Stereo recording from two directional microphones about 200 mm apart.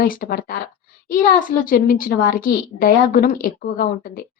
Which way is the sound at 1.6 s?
45° left (ahead or behind).